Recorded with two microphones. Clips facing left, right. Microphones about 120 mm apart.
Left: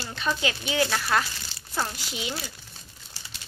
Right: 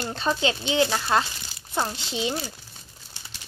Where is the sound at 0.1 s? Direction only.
30° right (ahead or behind).